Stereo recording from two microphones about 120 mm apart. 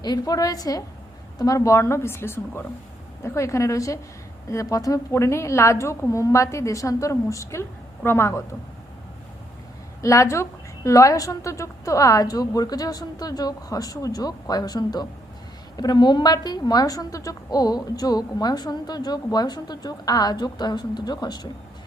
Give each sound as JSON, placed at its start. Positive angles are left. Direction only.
{"t": 0.0, "sound": "a woman's voice", "side_deg": 30}
{"t": 10.0, "sound": "a woman's voice", "side_deg": 25}